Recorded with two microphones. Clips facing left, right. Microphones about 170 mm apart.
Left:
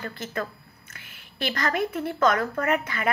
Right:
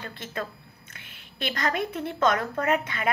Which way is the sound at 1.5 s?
25° right (ahead or behind).